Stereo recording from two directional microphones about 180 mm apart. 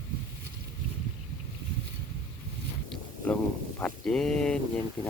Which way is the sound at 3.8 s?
5° left (ahead or behind).